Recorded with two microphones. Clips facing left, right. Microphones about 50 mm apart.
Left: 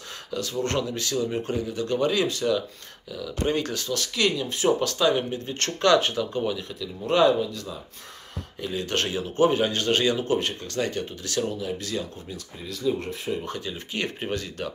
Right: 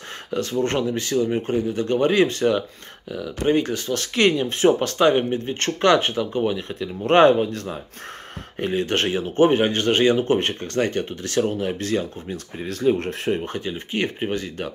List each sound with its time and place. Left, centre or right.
0.3 s speech: right
3.1 s speech: right
7.1 s speech: right
8.8 s speech: right
12.6 s speech: right
13.5 s speech: right